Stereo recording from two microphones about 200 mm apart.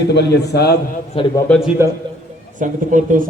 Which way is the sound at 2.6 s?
40° right (ahead or behind).